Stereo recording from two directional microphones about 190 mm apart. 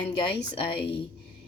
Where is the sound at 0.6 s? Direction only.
30° left (ahead or behind).